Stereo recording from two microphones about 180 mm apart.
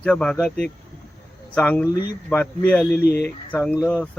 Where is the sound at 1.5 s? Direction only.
10° left (ahead or behind).